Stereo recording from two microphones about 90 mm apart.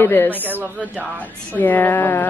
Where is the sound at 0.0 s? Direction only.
25° left (ahead or behind).